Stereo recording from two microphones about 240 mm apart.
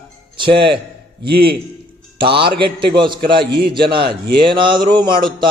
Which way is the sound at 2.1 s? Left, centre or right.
Right.